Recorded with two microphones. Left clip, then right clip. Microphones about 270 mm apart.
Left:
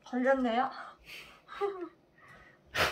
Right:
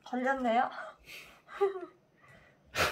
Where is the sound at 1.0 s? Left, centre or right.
Centre.